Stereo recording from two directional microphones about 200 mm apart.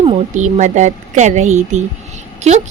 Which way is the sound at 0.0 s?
35° right (ahead or behind).